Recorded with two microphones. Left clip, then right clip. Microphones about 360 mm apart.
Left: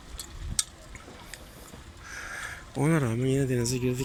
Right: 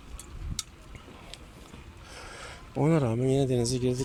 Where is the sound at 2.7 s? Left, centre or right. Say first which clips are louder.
Right 2 dB; centre.